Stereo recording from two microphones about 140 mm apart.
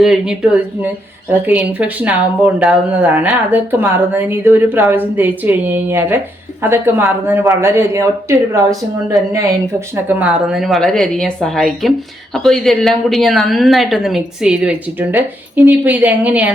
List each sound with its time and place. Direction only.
0.0 s a woman's voice: 5° right (ahead or behind); by 8.6 s 20° right (ahead or behind)
9.9 s a woman's voice: 10° right (ahead or behind)